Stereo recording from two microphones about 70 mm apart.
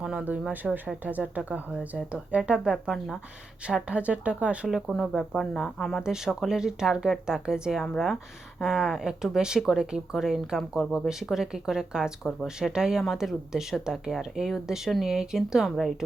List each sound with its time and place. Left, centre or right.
0.0 s speech: centre
0.5 s speech: right
2.5 s speech: centre
4.7 s speech: centre
6.0 s speech: centre
7.8 s speech: centre